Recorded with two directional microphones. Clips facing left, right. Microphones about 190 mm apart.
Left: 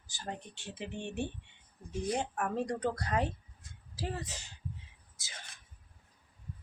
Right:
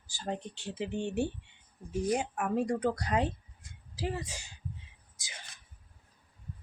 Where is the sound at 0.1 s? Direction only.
15° right (ahead or behind).